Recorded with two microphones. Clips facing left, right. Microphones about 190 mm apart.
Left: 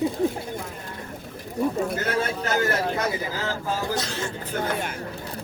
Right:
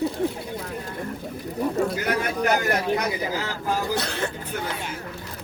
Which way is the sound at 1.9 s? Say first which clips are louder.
Right 1 dB; 15° right (ahead or behind).